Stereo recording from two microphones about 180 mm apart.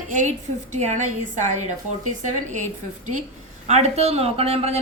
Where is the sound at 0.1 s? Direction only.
40° right (ahead or behind).